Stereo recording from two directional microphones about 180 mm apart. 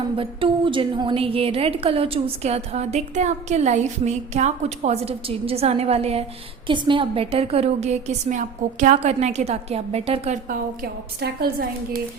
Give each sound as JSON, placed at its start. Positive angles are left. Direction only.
{"t": 0.2, "sound": "a woman's voice", "side_deg": -30}
{"t": 11.2, "sound": "a woman's voice", "side_deg": -60}